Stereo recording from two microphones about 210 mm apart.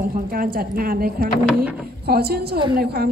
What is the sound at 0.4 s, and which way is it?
A woman's voice, 45° right (ahead or behind).